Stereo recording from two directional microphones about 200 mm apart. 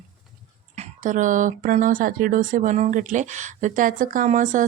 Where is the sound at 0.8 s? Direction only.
40° right (ahead or behind).